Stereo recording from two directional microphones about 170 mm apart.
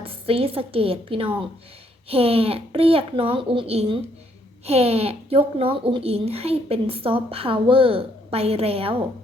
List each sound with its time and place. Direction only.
0.0 s a woman's voice: 35° right (ahead or behind)